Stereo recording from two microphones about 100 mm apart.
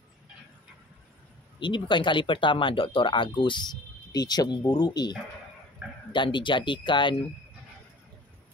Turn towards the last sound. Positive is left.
turn(degrees=55)  # may be behind; listen again after turning